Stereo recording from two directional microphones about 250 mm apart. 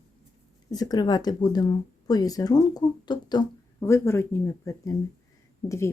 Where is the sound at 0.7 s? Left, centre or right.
Centre.